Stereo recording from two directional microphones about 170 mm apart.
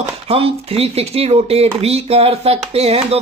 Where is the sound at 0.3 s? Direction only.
35° right (ahead or behind).